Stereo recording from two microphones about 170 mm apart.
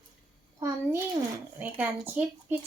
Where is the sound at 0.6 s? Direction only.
15° right (ahead or behind).